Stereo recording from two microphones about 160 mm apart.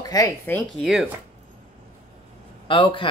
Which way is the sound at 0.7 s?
5° right (ahead or behind).